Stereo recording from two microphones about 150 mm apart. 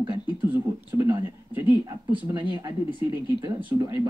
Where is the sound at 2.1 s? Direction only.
30° right (ahead or behind).